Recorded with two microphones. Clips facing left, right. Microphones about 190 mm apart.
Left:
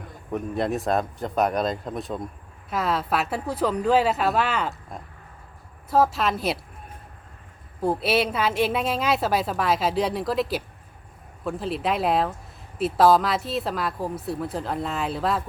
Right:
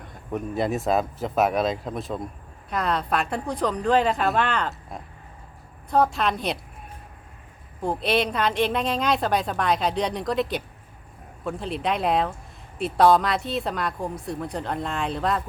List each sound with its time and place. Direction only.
0.0 s a woman's voice: centre (ahead or behind)
7.8 s a woman's voice: 5° left (ahead or behind)